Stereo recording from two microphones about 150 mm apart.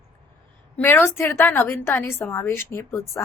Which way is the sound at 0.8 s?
15° left (ahead or behind).